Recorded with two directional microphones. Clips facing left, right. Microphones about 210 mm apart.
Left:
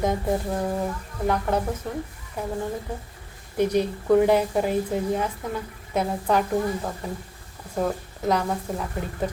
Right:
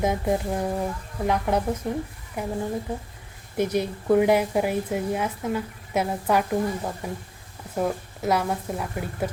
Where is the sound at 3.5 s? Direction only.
10° right (ahead or behind).